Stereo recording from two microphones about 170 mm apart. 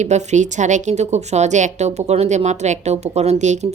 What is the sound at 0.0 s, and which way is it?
Speech, 45° right (ahead or behind).